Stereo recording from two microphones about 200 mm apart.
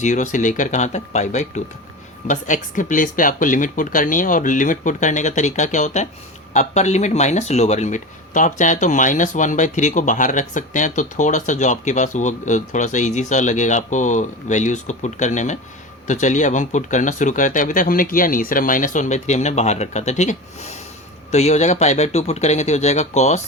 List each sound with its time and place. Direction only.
0.0 s speech: 40° left (ahead or behind)